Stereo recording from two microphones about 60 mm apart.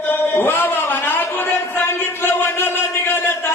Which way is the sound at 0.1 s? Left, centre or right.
Left.